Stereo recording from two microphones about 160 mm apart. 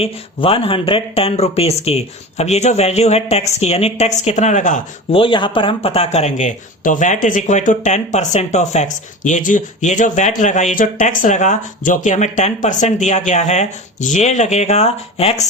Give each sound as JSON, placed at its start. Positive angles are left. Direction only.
{"t": 0.0, "sound": "speech", "side_deg": 35}
{"t": 5.1, "sound": "speech", "side_deg": 30}